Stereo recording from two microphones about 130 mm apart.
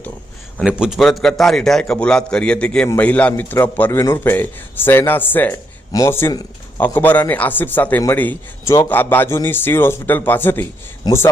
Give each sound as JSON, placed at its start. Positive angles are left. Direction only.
{"t": 0.6, "sound": "a man's voice", "side_deg": -5}
{"t": 11.1, "sound": "speech", "side_deg": 30}